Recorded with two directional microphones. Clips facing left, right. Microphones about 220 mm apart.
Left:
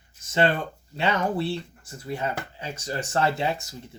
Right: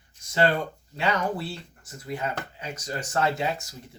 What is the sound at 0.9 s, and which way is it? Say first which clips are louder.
Speech: left 2 dB; 25° left (ahead or behind).